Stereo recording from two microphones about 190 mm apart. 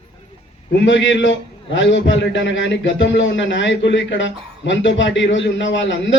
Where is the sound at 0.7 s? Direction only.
70° left (ahead or behind).